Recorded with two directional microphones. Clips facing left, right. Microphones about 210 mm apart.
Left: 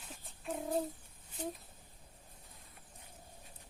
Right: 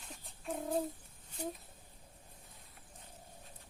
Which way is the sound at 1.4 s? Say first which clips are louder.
Even; 10° right (ahead or behind).